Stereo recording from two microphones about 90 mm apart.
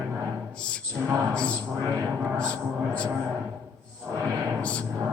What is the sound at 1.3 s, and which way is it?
Speech, 10° left (ahead or behind).